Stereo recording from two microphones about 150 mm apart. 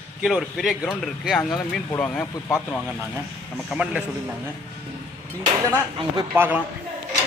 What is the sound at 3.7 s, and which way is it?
Speech, 5° right (ahead or behind).